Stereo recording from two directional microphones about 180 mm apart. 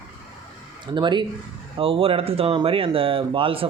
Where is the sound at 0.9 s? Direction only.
25° right (ahead or behind).